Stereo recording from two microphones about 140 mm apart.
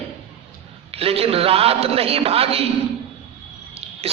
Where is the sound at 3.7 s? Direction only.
45° right (ahead or behind).